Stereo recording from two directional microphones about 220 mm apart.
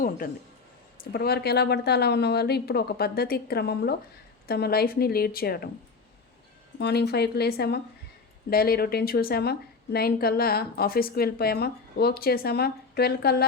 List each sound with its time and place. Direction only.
0.2 s a woman's voice: 40° left (ahead or behind)
6.7 s a woman's voice: 50° left (ahead or behind)